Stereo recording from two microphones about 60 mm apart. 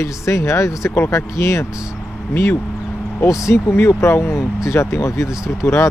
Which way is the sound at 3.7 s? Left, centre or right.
Left.